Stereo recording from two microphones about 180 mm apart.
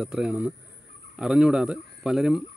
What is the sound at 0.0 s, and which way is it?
Speech, 5° right (ahead or behind).